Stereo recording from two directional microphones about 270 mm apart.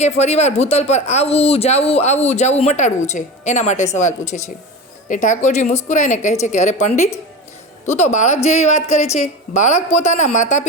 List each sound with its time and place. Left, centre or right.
0.0 s speech: left